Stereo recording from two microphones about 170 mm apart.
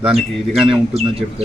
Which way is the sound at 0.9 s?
35° right (ahead or behind).